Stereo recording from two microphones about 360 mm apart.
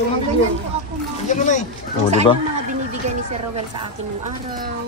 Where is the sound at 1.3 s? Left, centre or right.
Centre.